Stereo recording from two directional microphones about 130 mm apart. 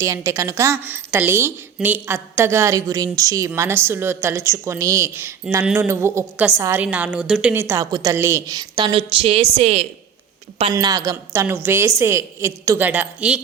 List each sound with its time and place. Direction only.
0.0 s a woman's voice: 25° right (ahead or behind); by 7.5 s 5° right (ahead or behind)
7.5 s a woman's voice: 20° right (ahead or behind); by 9.8 s 55° right (ahead or behind)
10.8 s a woman's voice: 30° right (ahead or behind); by 13.4 s 10° right (ahead or behind)